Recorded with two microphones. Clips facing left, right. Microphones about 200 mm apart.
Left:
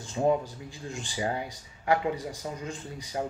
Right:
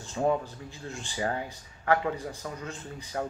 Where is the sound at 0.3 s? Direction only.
15° left (ahead or behind).